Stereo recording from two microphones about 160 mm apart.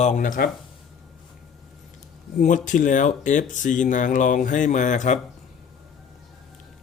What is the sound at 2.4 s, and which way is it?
Speech, 55° left (ahead or behind).